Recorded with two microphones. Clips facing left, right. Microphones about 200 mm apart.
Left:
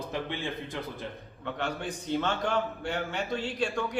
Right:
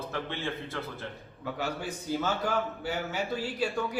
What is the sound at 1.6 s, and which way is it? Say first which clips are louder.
A man's voice: left 1 dB; 5° right (ahead or behind).